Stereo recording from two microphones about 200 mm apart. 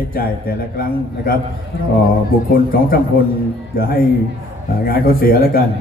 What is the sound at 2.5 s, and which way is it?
A man's voice, 50° left (ahead or behind).